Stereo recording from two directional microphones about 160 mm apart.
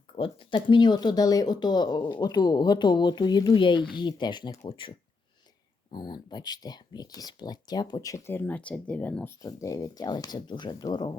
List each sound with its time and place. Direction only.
0.2 s speech: 30° left (ahead or behind)